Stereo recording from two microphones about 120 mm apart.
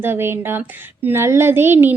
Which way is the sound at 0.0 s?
20° right (ahead or behind).